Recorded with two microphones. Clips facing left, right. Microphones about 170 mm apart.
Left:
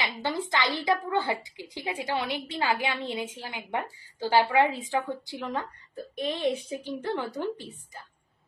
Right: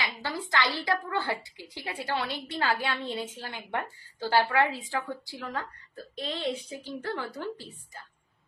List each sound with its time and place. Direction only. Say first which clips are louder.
0.0 s a woman's voice: left 4 dB; 20° left (ahead or behind)